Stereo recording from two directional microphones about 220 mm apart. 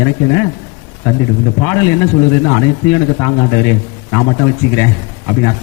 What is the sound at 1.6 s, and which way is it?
A man's voice, 15° left (ahead or behind).